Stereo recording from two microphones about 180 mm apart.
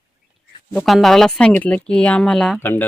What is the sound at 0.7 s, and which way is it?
Speech, centre (ahead or behind).